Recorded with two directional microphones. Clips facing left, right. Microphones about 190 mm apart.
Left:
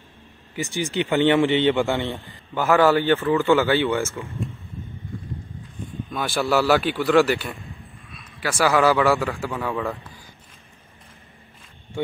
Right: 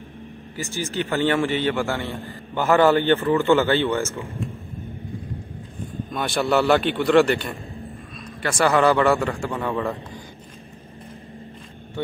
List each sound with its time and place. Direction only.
0.6 s a man's voice: 15° left (ahead or behind)
2.5 s a man's voice: 5° left (ahead or behind)
6.1 s a man's voice: centre (ahead or behind)